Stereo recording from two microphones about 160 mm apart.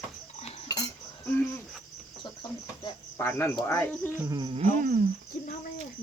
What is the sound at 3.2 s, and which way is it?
Speech, 15° left (ahead or behind).